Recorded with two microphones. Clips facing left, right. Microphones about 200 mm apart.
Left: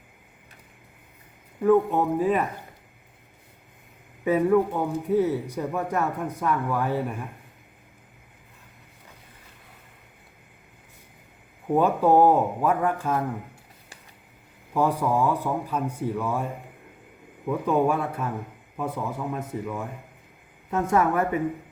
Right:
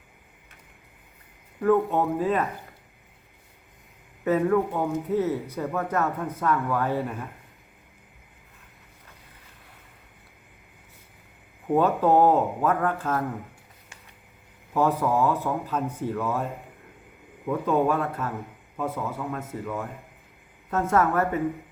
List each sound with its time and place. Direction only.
1.6 s speech: 10° left (ahead or behind)
4.2 s speech: 10° left (ahead or behind)
11.7 s speech: 10° left (ahead or behind)
14.7 s speech: 10° left (ahead or behind)